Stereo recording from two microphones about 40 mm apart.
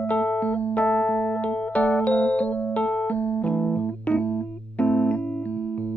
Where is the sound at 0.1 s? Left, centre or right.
Left.